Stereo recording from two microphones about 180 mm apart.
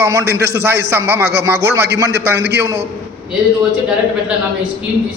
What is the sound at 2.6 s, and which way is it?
Speech, 15° right (ahead or behind).